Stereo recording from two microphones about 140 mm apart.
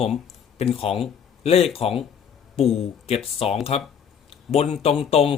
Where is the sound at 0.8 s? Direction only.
45° left (ahead or behind).